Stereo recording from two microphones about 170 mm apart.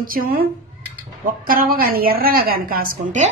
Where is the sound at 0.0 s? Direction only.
55° right (ahead or behind).